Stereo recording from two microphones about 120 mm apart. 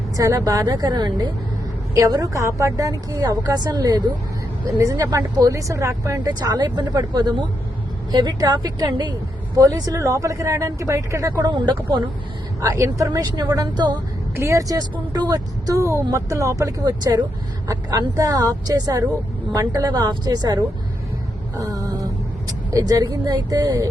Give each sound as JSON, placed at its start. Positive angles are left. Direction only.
{"t": 0.2, "sound": "speech", "side_deg": -30}
{"t": 12.6, "sound": "speech", "side_deg": -25}